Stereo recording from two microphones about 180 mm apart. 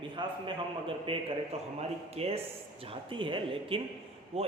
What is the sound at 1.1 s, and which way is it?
Speech, 30° right (ahead or behind).